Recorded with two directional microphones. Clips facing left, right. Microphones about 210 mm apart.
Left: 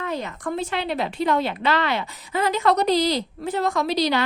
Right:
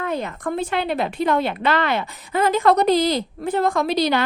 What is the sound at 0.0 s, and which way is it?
A woman's voice, 55° right (ahead or behind).